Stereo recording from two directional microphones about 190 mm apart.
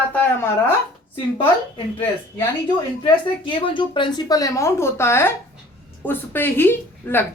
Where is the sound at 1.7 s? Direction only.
25° left (ahead or behind).